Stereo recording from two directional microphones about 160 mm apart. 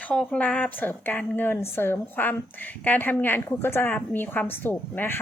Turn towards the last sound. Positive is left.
turn(degrees=10)  # may be behind; listen again after turning